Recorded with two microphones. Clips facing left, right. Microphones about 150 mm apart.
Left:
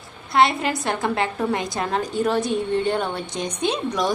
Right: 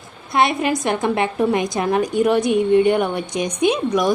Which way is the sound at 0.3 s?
20° right (ahead or behind).